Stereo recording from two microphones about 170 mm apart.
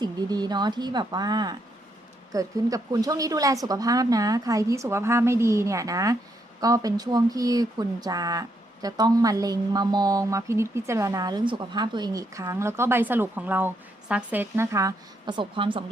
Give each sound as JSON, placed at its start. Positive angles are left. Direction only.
{"t": 0.0, "sound": "speech", "side_deg": -25}